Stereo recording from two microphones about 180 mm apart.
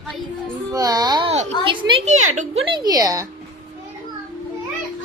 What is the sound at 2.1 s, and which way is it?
Speech, 40° right (ahead or behind).